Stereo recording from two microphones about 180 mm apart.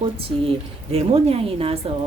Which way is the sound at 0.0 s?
30° right (ahead or behind).